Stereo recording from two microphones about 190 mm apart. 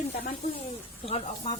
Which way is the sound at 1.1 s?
30° left (ahead or behind).